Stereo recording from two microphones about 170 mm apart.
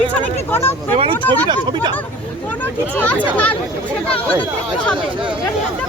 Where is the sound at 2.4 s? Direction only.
10° left (ahead or behind).